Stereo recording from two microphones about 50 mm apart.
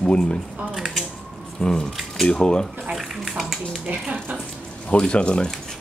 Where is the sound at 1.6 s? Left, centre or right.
Centre.